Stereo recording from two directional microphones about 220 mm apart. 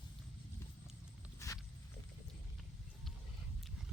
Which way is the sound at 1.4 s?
15° left (ahead or behind).